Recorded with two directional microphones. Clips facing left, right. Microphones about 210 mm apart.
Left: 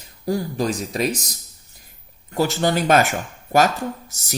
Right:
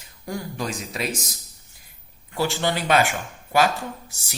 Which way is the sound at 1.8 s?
45° left (ahead or behind).